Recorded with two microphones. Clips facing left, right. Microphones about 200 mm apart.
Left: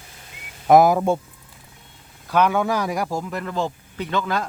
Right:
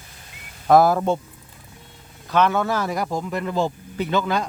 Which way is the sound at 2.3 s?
10° left (ahead or behind).